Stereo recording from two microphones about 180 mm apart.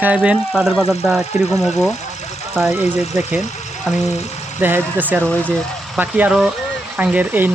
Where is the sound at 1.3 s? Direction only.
40° left (ahead or behind).